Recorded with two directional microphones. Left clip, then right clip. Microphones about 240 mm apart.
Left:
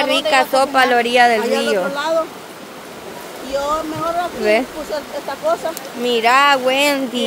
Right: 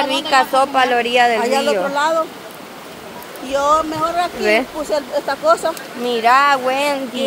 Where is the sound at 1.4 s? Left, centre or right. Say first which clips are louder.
Right 1 dB; centre.